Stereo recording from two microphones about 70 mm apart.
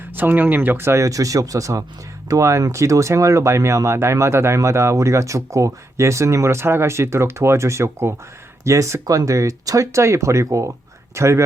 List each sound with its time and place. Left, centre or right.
0.2 s speech: right
1.0 s speech: right